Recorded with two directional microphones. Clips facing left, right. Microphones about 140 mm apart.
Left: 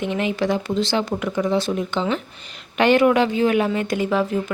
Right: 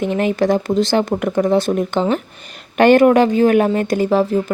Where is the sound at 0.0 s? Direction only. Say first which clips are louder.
Right 5 dB; 45° right (ahead or behind).